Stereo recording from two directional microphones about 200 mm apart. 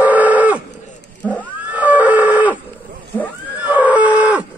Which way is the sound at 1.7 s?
10° right (ahead or behind).